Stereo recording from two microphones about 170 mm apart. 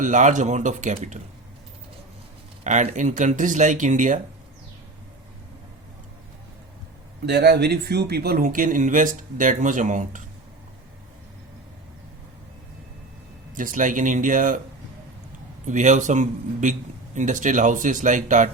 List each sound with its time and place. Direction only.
0.0 s speech: 45° right (ahead or behind)
2.6 s speech: 45° right (ahead or behind)
7.3 s speech: 75° right (ahead or behind); by 10.2 s 50° right (ahead or behind)
13.6 s speech: 50° right (ahead or behind)
15.6 s speech: 45° right (ahead or behind)